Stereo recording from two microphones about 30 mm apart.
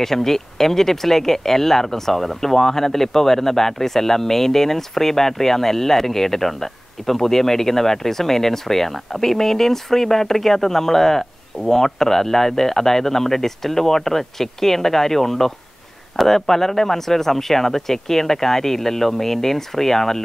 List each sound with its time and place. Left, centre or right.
0.0 s speech: centre